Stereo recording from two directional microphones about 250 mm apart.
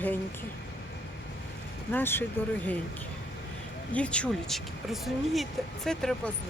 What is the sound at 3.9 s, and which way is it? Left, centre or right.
Speech, centre.